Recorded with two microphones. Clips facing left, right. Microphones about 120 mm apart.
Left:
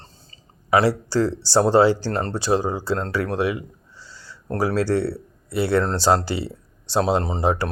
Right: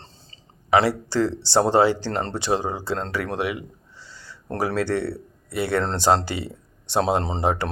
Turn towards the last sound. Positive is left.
turn(degrees=-25)  # may be behind; listen again after turning